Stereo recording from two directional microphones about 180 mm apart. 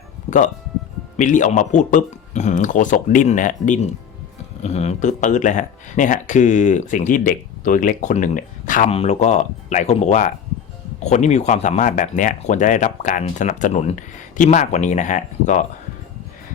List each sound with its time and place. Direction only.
0.3 s speech: 45° left (ahead or behind)
8.9 s speech: 35° left (ahead or behind)